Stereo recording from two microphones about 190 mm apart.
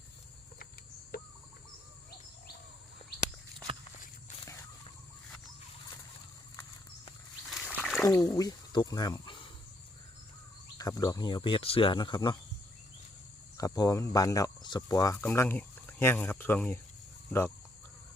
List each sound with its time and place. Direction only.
1.1 s chicken: 55° left (ahead or behind)
7.4 s a sound: centre (ahead or behind)
8.0 s speech: 15° left (ahead or behind)
10.8 s speech: 20° left (ahead or behind)
13.6 s speech: 20° left (ahead or behind)